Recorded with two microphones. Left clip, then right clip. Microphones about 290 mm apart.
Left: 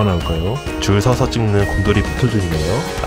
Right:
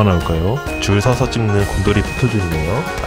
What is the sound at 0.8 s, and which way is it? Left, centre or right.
Speech, centre.